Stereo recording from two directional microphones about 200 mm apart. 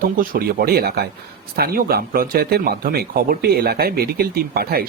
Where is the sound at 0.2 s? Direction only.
50° right (ahead or behind).